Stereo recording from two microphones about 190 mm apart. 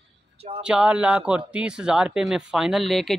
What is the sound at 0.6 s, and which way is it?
A man's voice, 5° right (ahead or behind).